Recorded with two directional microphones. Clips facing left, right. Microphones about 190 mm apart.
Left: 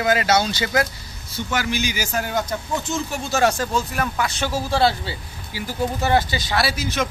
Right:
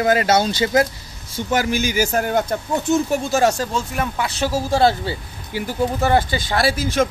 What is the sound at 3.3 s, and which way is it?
Speech, 35° right (ahead or behind).